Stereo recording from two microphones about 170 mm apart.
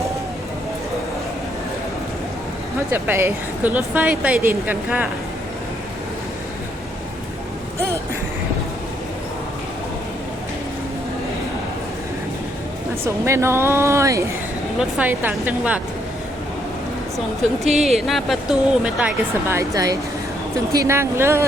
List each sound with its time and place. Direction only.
2.9 s speech: 15° right (ahead or behind)
13.1 s speech: 15° right (ahead or behind)
17.7 s speech: centre (ahead or behind)